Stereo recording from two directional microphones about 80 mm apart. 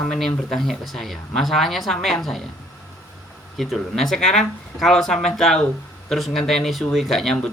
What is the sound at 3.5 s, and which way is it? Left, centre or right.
Speech, centre.